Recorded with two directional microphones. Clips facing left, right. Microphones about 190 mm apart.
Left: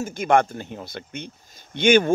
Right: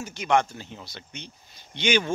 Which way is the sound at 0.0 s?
50° left (ahead or behind).